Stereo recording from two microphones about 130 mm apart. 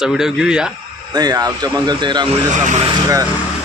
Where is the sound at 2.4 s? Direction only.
70° right (ahead or behind).